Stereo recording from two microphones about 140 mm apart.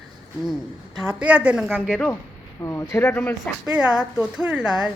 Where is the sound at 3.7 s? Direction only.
5° right (ahead or behind).